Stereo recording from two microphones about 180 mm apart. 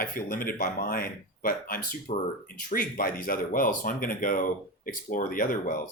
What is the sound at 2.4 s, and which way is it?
Speech, 50° left (ahead or behind).